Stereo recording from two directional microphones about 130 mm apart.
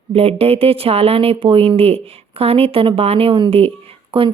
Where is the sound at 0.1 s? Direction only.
50° right (ahead or behind).